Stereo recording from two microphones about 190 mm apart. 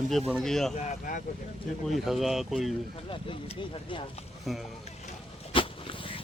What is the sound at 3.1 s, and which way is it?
Speech, 25° left (ahead or behind).